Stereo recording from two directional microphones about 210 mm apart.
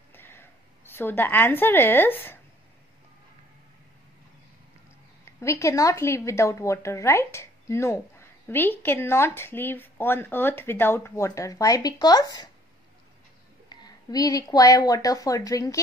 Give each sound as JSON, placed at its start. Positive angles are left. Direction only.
{"t": 0.1, "sound": "a sound", "side_deg": 10}
{"t": 5.4, "sound": "a woman's voice", "side_deg": 15}
{"t": 13.7, "sound": "speech", "side_deg": 20}